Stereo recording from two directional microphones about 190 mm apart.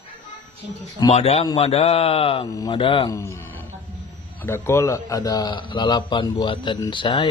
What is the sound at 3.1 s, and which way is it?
A man's voice, 15° left (ahead or behind).